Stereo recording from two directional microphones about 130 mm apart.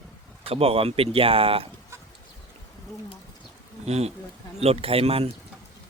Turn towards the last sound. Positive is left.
turn(degrees=-50)  # may be behind; listen again after turning